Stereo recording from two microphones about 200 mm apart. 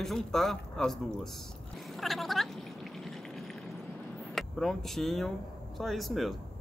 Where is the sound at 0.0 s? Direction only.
Centre (ahead or behind).